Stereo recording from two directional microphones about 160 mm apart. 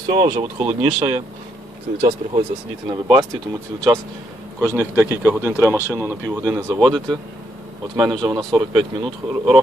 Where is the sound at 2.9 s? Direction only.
25° right (ahead or behind).